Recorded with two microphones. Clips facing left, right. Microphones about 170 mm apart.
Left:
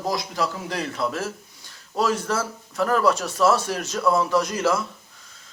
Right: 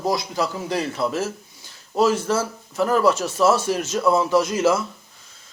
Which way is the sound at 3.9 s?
25° right (ahead or behind).